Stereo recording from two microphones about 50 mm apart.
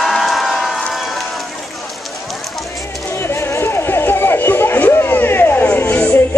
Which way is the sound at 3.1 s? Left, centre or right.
Left.